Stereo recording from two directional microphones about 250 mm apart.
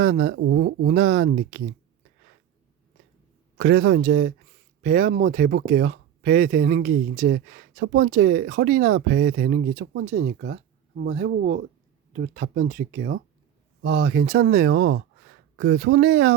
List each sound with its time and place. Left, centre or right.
0.0 s speech: right
3.6 s speech: right